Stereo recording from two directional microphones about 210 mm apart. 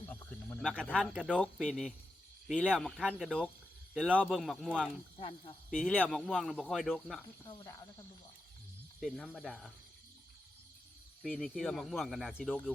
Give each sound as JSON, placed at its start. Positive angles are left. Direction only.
{"t": 0.0, "sound": "snake", "side_deg": 10}
{"t": 1.1, "sound": "speech", "side_deg": -5}
{"t": 5.1, "sound": "speech", "side_deg": 25}
{"t": 5.7, "sound": "speech", "side_deg": 5}
{"t": 7.4, "sound": "speech", "side_deg": 15}
{"t": 9.0, "sound": "speech", "side_deg": 0}
{"t": 11.2, "sound": "speech", "side_deg": 0}